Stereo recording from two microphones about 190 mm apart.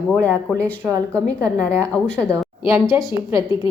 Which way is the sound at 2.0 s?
5° left (ahead or behind).